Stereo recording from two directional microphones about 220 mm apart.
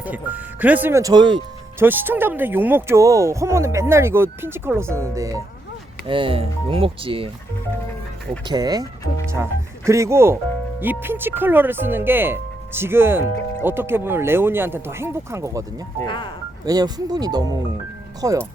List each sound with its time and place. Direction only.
0.0 s speech: 5° right (ahead or behind); by 7.3 s 25° right (ahead or behind)
8.4 s speech: 15° right (ahead or behind)
16.0 s speech: 20° left (ahead or behind)
16.6 s speech: 15° right (ahead or behind)